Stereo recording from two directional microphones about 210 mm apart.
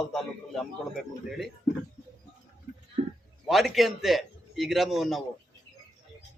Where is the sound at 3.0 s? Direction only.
35° right (ahead or behind).